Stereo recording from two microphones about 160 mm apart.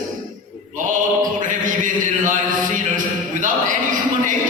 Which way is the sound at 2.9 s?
55° right (ahead or behind).